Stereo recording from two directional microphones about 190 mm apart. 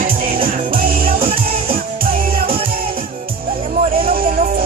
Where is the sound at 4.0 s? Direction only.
50° right (ahead or behind).